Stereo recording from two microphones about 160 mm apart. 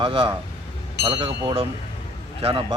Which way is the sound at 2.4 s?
35° right (ahead or behind).